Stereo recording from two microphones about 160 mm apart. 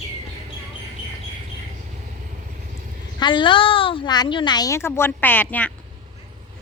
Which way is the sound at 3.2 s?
30° left (ahead or behind).